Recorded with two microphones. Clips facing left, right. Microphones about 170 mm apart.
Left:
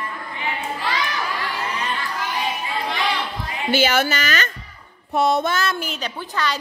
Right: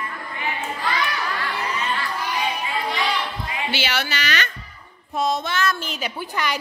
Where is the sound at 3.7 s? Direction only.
45° left (ahead or behind).